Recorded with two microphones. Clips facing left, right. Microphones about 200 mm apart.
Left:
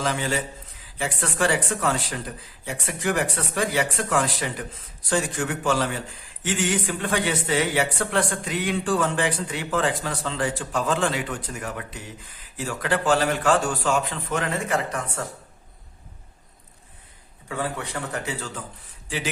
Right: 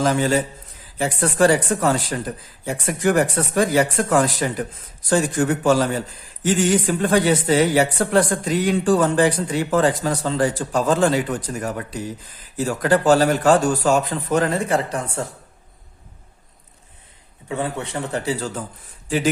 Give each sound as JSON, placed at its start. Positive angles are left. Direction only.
{"t": 0.0, "sound": "a man's voice", "side_deg": -45}
{"t": 17.5, "sound": "a man's voice", "side_deg": -25}